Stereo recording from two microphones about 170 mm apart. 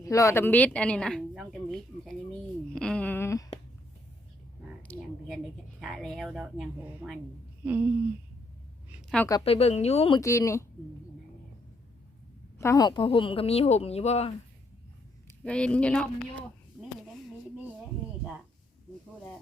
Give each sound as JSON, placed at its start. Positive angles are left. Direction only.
{"t": 0.0, "sound": "speech", "side_deg": 20}
{"t": 2.6, "sound": "a sound", "side_deg": 5}
{"t": 4.8, "sound": "a woman's voice", "side_deg": 5}
{"t": 7.6, "sound": "a sound", "side_deg": -10}
{"t": 9.0, "sound": "a woman's voice", "side_deg": 5}
{"t": 9.4, "sound": "speech", "side_deg": 35}
{"t": 10.2, "sound": "speech", "side_deg": 20}
{"t": 12.5, "sound": "speech", "side_deg": 20}
{"t": 15.4, "sound": "speech", "side_deg": 5}
{"t": 16.8, "sound": "a sound", "side_deg": -5}